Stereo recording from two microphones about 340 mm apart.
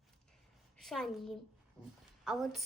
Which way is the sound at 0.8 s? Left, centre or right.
Centre.